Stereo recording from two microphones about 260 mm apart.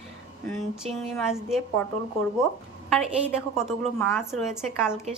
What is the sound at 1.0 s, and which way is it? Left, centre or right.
Speech, centre.